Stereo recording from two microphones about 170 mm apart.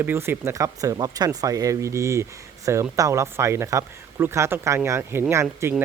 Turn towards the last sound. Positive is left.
turn(degrees=-15)  # may be behind; listen again after turning